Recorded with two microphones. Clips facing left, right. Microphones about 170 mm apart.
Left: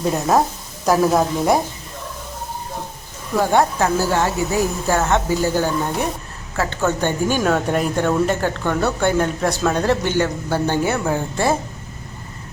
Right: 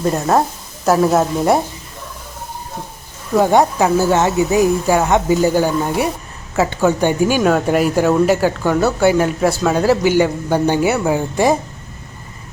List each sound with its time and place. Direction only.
0.0 s a woman's voice: centre (ahead or behind)
3.3 s speech: 15° right (ahead or behind)